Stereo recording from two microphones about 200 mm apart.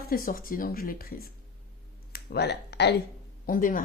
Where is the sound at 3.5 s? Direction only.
45° left (ahead or behind).